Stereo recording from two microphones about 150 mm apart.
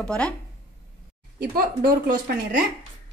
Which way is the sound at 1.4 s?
80° right.